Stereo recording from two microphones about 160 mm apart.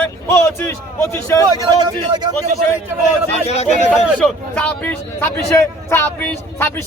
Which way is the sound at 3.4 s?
40° left (ahead or behind).